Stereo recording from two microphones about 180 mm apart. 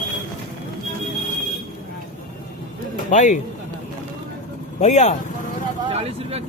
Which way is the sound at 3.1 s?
45° left (ahead or behind).